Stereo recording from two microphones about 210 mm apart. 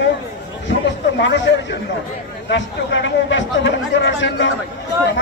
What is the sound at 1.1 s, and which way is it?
Speech, 60° left (ahead or behind).